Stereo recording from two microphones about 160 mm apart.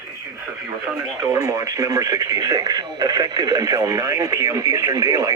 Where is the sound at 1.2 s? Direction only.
20° right (ahead or behind).